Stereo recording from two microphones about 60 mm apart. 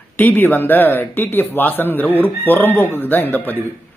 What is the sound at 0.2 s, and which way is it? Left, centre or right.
Speech, left.